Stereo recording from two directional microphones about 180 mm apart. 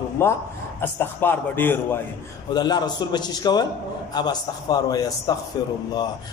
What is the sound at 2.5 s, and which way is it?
A man's voice, 25° left (ahead or behind).